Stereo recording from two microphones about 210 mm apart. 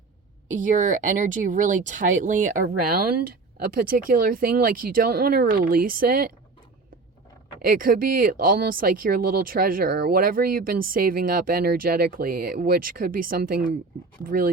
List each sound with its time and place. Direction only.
0.5 s speech: 35° right (ahead or behind)
7.6 s speech: 40° right (ahead or behind)